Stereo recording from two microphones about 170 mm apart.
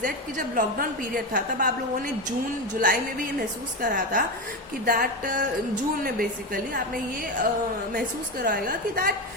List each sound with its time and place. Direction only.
0.0 s a woman's voice: 50° right (ahead or behind)
2.7 s a woman's voice: 55° right (ahead or behind)
7.9 s a woman's voice: 55° right (ahead or behind)